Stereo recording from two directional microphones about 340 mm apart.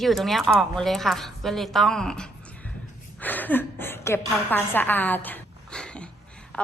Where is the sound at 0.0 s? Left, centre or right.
Centre.